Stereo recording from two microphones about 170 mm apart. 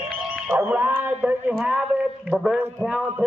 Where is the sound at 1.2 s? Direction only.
10° right (ahead or behind).